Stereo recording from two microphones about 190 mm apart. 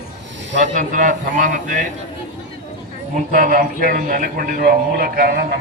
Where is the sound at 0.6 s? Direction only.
45° right (ahead or behind).